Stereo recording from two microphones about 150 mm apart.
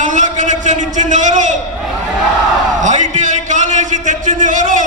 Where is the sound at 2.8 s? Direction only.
55° right (ahead or behind).